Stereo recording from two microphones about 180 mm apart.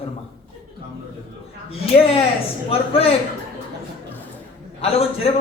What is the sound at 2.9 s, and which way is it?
Speech, 35° left (ahead or behind).